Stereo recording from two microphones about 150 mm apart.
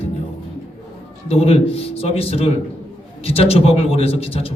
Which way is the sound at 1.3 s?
40° left (ahead or behind).